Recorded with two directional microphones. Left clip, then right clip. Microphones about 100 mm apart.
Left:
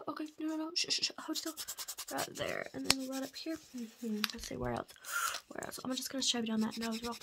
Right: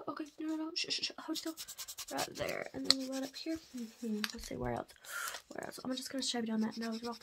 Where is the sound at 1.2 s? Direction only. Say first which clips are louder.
Left 1 dB; 25° left (ahead or behind).